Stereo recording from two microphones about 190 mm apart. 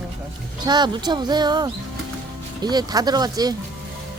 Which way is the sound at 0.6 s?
25° right (ahead or behind).